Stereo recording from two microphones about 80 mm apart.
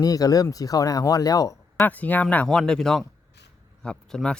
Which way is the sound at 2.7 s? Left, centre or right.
Centre.